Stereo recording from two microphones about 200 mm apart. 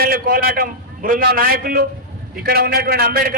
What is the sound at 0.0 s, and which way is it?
A man's voice, 45° right (ahead or behind).